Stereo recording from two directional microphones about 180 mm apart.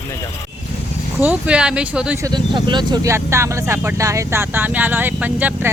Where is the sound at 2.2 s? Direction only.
20° right (ahead or behind).